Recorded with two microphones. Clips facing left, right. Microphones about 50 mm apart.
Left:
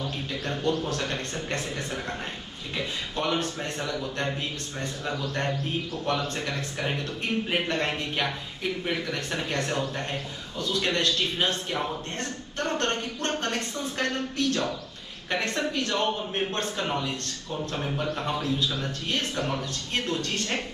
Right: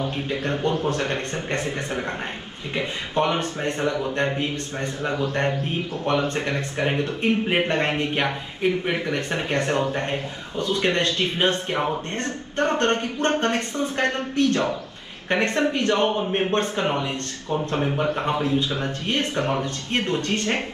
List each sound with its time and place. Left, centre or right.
0.0 s a man's voice: right